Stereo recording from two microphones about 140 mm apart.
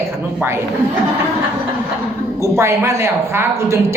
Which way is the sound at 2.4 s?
20° right (ahead or behind).